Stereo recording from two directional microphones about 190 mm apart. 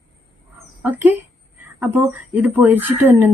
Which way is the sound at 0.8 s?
10° right (ahead or behind).